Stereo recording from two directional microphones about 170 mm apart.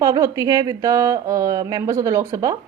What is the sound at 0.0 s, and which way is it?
A woman's voice, 20° right (ahead or behind).